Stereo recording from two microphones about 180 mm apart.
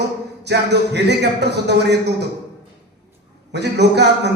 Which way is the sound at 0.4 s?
70° right (ahead or behind).